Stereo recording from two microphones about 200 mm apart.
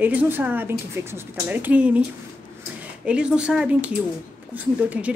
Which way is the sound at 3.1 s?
5° right (ahead or behind).